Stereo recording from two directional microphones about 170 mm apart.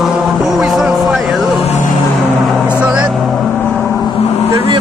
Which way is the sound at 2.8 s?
5° right (ahead or behind).